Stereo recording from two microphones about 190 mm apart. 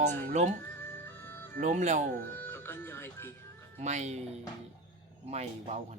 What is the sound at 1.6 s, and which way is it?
Speech, 40° right (ahead or behind).